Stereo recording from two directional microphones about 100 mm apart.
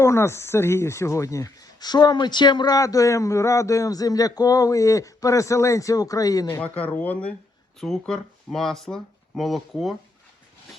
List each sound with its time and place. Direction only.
0.0 s speech: 25° left (ahead or behind)
6.5 s speech: 15° left (ahead or behind); by 9.9 s centre (ahead or behind)